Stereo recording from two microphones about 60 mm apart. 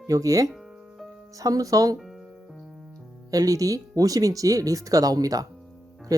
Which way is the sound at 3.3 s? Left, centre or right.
Right.